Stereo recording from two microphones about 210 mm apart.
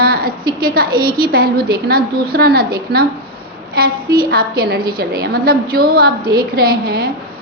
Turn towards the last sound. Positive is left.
turn(degrees=-45)  # may be behind; listen again after turning